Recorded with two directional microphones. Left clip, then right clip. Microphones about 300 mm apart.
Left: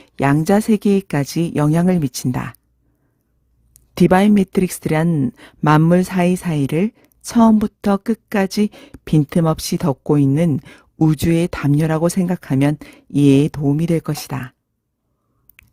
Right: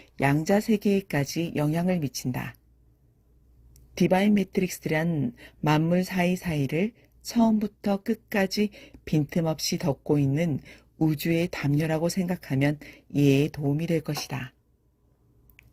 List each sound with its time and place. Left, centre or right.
0.0 s a woman's voice: left
3.9 s a woman's voice: left
5.0 s speech: left
5.4 s a woman's voice: left